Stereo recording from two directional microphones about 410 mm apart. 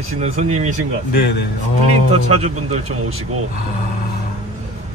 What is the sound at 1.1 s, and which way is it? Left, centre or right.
Speech, left.